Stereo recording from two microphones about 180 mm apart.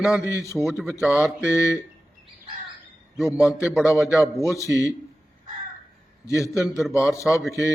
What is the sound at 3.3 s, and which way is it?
Speech, 5° right (ahead or behind).